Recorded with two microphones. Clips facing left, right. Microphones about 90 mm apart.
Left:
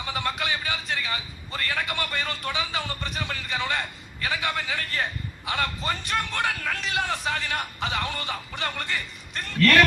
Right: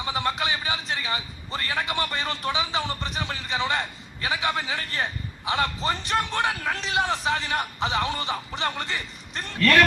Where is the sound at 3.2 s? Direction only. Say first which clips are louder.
Right 2 dB; 30° right (ahead or behind).